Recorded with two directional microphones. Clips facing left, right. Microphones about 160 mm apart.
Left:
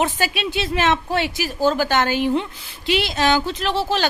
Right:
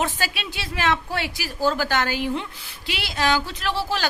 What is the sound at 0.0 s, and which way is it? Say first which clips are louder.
A woman's voice: left 5 dB; 20° left (ahead or behind).